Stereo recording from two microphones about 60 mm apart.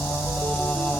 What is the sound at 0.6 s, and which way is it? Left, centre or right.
Music, centre.